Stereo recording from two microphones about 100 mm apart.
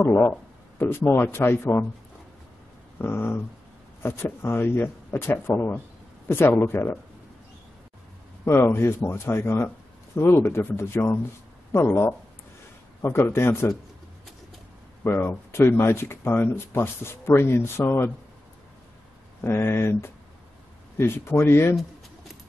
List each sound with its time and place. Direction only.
0.0 s speech: 20° left (ahead or behind)
3.0 s speech: 20° left (ahead or behind)
8.5 s speech: 25° left (ahead or behind)
15.0 s speech: 25° left (ahead or behind)
19.4 s speech: 25° left (ahead or behind)